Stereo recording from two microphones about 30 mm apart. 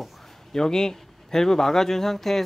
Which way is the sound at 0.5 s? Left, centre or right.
Centre.